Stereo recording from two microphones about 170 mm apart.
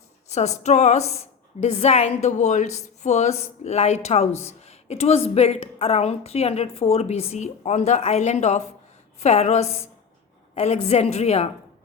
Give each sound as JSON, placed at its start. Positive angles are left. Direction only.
{"t": 0.3, "sound": "a woman's voice", "side_deg": 40}